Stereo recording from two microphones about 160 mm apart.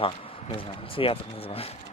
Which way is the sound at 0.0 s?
35° left (ahead or behind).